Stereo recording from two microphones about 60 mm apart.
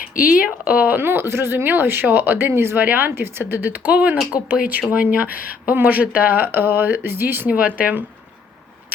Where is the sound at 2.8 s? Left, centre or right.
Right.